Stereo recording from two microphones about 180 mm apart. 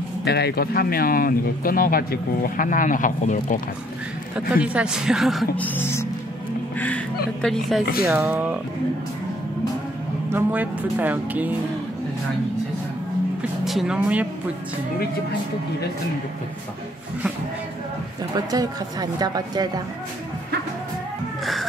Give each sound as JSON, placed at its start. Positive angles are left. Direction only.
{"t": 0.2, "sound": "speech", "side_deg": 65}
{"t": 4.5, "sound": "speech", "side_deg": -5}
{"t": 5.8, "sound": "speech", "side_deg": 15}
{"t": 8.0, "sound": "speech", "side_deg": -10}
{"t": 10.3, "sound": "speech", "side_deg": -10}
{"t": 13.4, "sound": "music", "side_deg": 0}
{"t": 18.3, "sound": "a woman's voice", "side_deg": -20}